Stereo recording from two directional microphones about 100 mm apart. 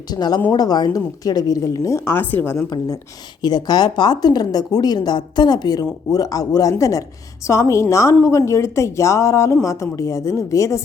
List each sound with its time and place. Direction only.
0.1 s a woman's voice: 45° left (ahead or behind); by 2.6 s 25° left (ahead or behind)
2.6 s a woman's voice: 40° left (ahead or behind)